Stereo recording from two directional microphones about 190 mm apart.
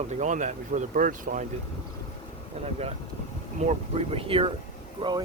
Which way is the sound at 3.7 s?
30° right (ahead or behind).